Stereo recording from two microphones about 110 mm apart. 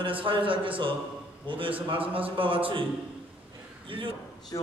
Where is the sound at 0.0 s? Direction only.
50° right (ahead or behind).